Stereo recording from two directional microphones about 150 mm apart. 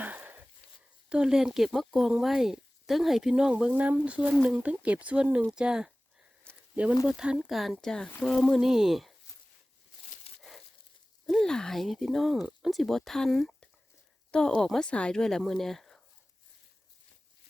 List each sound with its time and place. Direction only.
0.0 s a sound: 10° right (ahead or behind)
1.1 s speech: 5° right (ahead or behind)
10.3 s crumpling: 40° left (ahead or behind)
11.3 s speech: 5° left (ahead or behind)